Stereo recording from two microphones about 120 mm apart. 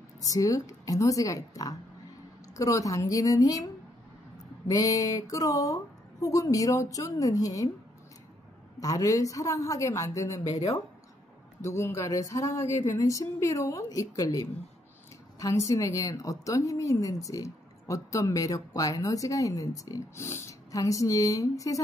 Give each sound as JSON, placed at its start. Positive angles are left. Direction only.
{"t": 0.3, "sound": "a woman's voice", "side_deg": 30}
{"t": 4.6, "sound": "a woman's voice", "side_deg": 30}
{"t": 8.7, "sound": "a woman's voice", "side_deg": 30}
{"t": 11.6, "sound": "a woman's voice", "side_deg": 25}